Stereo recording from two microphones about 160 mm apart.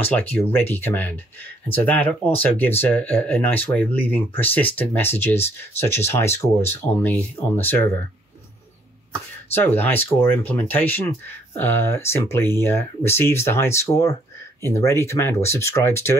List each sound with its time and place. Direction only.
0.0 s speech: 10° left (ahead or behind)
9.5 s speech: 15° left (ahead or behind)